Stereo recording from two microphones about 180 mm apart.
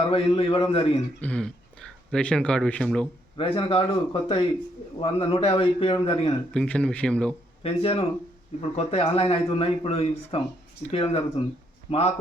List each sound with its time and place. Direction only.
0.1 s speech: 30° left (ahead or behind)
1.2 s speech: 5° left (ahead or behind)
3.3 s speech: 30° left (ahead or behind)
6.5 s speech: 5° left (ahead or behind)
7.6 s a man's voice: 30° left (ahead or behind)